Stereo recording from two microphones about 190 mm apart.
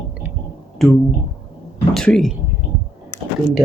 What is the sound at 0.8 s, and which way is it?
Speech, centre (ahead or behind).